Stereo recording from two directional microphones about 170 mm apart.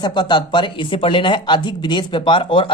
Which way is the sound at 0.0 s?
25° left (ahead or behind).